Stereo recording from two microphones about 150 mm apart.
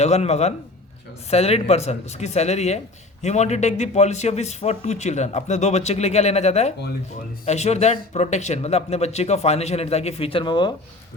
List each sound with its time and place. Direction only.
0.0 s speech: 45° left (ahead or behind); by 10.7 s 30° left (ahead or behind)